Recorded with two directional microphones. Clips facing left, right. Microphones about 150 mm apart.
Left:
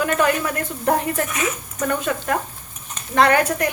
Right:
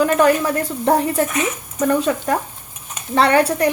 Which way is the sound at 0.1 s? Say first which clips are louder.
Right 5 dB; 35° right (ahead or behind).